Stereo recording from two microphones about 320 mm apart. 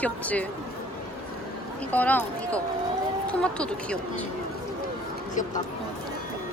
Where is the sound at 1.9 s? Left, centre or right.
Centre.